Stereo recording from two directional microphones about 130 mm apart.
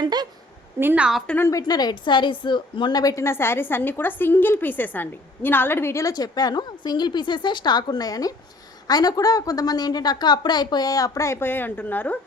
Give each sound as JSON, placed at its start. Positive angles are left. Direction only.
{"t": 0.0, "sound": "a woman's voice", "side_deg": -30}
{"t": 0.8, "sound": "a woman's voice", "side_deg": -15}
{"t": 1.5, "sound": "a woman's voice", "side_deg": 30}